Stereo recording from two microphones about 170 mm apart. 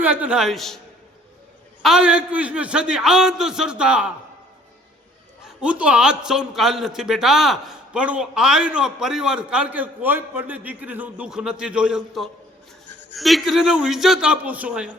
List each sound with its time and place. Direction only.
0.0 s a man's voice: 10° right (ahead or behind)
1.8 s a man's voice: 5° right (ahead or behind)
5.5 s a man's voice: 5° right (ahead or behind)